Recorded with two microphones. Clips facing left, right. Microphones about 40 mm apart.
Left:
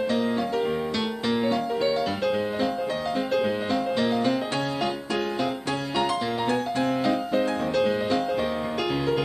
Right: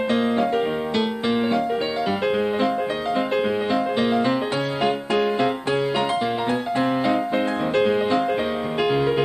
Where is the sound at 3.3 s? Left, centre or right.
Right.